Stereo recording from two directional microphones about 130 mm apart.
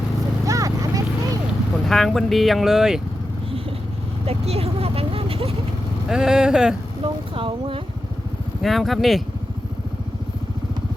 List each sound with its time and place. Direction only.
0.4 s clip-clop: 25° right (ahead or behind)
1.7 s speech: centre (ahead or behind)
4.3 s vehicle: 50° right (ahead or behind)
6.1 s speech: 5° right (ahead or behind)
7.0 s speech: 45° right (ahead or behind)
8.6 s speech: centre (ahead or behind)